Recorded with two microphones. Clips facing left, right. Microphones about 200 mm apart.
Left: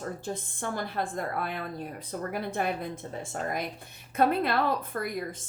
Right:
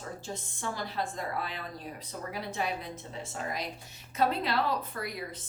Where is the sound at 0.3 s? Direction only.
55° left (ahead or behind).